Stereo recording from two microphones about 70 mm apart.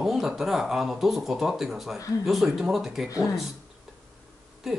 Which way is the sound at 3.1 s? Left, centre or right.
Left.